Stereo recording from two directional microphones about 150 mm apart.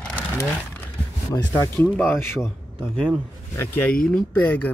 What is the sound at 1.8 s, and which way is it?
Speech, 10° left (ahead or behind).